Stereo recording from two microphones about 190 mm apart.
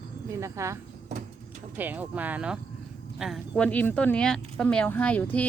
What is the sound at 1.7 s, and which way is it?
Speech, 10° right (ahead or behind).